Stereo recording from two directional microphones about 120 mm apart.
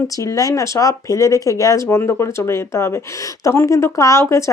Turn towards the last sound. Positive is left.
turn(degrees=25)  # may be behind; listen again after turning